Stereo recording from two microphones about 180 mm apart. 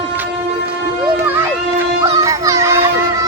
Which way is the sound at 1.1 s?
10° right (ahead or behind).